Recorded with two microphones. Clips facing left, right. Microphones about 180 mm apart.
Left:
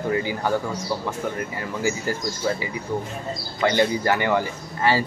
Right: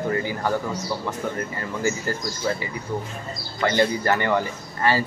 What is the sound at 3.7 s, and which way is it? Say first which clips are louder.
Speech: left 1 dB; 15° left (ahead or behind).